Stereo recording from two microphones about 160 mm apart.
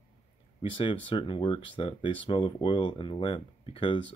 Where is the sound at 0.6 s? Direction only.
35° left (ahead or behind).